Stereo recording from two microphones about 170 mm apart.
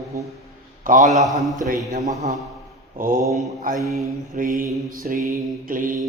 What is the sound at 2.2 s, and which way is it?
Speech, 45° right (ahead or behind).